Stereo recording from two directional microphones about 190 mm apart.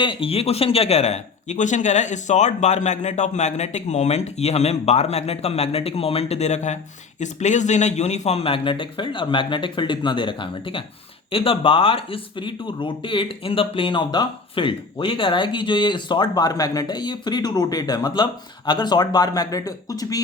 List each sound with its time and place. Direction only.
0.0 s a man's voice: 25° left (ahead or behind)